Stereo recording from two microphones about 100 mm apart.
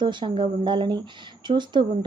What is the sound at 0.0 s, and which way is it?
A woman's voice, 50° right (ahead or behind).